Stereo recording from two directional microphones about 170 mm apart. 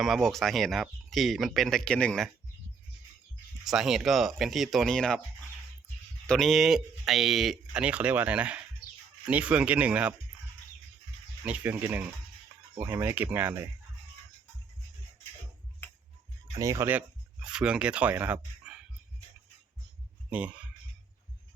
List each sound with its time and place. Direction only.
0.0 s speech: centre (ahead or behind)
3.6 s speech: centre (ahead or behind)
6.2 s speech: 5° left (ahead or behind)
11.4 s speech: 10° right (ahead or behind)
16.6 s speech: 20° right (ahead or behind)
20.3 s speech: 10° right (ahead or behind)